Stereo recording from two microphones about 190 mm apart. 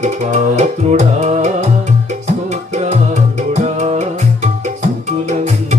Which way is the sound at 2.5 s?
40° right (ahead or behind).